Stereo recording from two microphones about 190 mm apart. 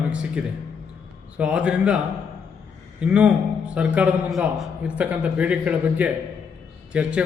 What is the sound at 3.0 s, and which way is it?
A man's voice, 5° right (ahead or behind).